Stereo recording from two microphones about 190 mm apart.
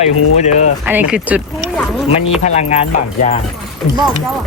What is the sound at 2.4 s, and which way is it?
Speech, 35° left (ahead or behind).